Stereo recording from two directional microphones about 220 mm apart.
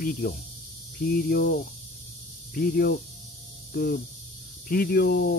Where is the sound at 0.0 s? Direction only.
45° left (ahead or behind).